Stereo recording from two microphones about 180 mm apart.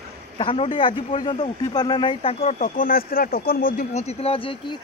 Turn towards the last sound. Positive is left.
turn(degrees=30)  # may be behind; listen again after turning